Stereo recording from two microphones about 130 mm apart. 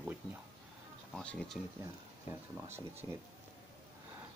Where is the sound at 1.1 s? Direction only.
5° left (ahead or behind).